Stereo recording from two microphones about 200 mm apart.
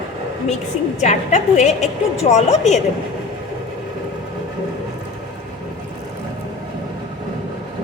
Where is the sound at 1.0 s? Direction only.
35° left (ahead or behind).